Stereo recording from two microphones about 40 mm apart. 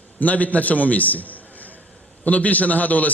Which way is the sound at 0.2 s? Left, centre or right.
Left.